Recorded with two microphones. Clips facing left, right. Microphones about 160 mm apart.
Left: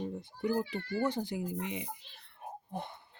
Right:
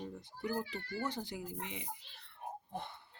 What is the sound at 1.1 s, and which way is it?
Speech, 15° left (ahead or behind).